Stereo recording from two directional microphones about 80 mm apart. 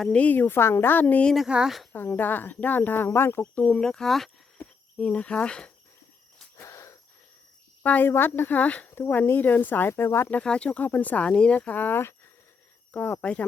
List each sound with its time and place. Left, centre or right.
0.0 s speech: centre
1.5 s speech: centre
1.9 s speech: left
3.5 s speech: centre
3.8 s speech: centre
6.6 s wheeze: left
7.8 s speech: left
9.9 s speech: left
10.4 s speech: centre